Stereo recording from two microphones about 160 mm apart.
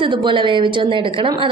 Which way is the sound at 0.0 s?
30° right (ahead or behind).